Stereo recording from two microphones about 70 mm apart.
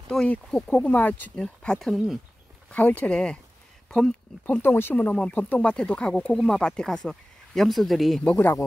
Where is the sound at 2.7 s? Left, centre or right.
Left.